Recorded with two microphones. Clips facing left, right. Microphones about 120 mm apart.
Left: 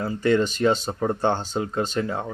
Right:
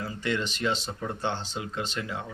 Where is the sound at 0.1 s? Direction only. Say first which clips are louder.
Left 12 dB; 45° left (ahead or behind).